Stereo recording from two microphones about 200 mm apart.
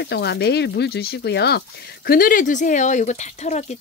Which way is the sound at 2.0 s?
45° left (ahead or behind).